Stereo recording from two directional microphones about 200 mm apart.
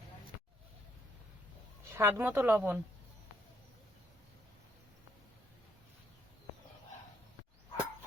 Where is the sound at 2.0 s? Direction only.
10° right (ahead or behind).